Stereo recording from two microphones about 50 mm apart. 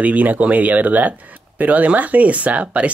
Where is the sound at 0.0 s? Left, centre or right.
Right.